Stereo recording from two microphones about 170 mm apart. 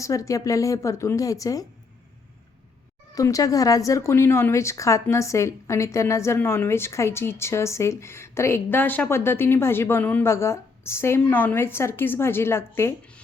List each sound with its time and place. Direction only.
0.0 s a woman's voice: 20° left (ahead or behind)
3.2 s a woman's voice: 20° left (ahead or behind)